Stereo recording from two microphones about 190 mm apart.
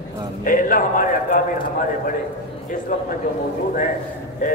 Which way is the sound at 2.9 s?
45° left (ahead or behind).